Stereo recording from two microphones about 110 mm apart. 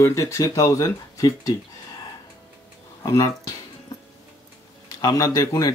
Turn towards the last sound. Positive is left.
turn(degrees=35)  # may be behind; listen again after turning